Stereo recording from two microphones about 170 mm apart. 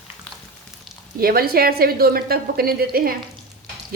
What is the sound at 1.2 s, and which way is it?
A woman's voice, 60° right (ahead or behind).